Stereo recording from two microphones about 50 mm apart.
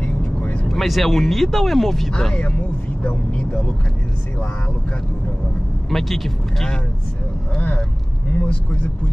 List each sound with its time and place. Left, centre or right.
0.0 s vehicle: left
0.7 s speech: centre
3.0 s speech: left
5.9 s speech: centre